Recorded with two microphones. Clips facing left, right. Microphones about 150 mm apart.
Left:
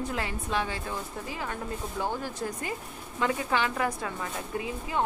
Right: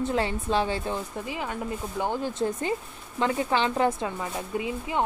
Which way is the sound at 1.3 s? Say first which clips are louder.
Right 3 dB; 20° right (ahead or behind).